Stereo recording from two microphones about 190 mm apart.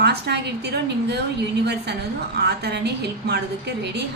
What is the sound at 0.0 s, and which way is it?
A woman's voice, 60° right (ahead or behind).